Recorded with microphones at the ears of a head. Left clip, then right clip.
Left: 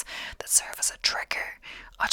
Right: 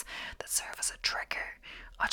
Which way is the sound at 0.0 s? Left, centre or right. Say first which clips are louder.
Left 4 dB; left.